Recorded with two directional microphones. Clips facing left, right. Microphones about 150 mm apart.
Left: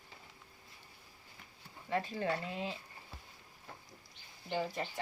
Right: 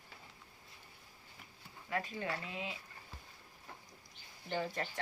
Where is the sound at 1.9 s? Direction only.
30° left (ahead or behind).